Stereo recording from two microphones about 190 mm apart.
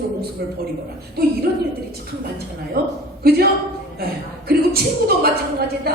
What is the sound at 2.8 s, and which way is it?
A woman's voice, 55° right (ahead or behind).